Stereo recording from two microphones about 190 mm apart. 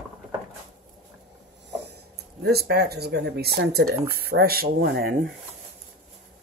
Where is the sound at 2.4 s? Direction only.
60° right (ahead or behind).